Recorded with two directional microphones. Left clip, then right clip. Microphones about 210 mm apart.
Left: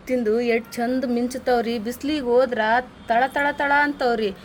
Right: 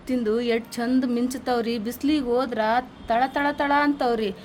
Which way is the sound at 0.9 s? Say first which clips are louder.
Right 1 dB; 40° right (ahead or behind).